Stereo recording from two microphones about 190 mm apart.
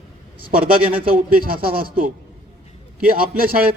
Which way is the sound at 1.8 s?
50° right (ahead or behind).